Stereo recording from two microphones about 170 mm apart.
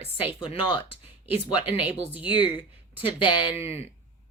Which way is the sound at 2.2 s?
30° left (ahead or behind).